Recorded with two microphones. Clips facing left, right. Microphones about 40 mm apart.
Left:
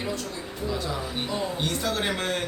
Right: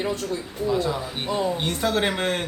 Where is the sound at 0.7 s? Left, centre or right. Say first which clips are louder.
Right 6 dB; right.